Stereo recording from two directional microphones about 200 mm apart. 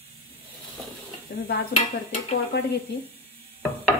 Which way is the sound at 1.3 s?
55° left (ahead or behind).